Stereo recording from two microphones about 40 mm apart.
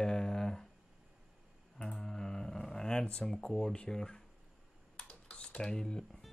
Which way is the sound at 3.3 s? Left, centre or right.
Centre.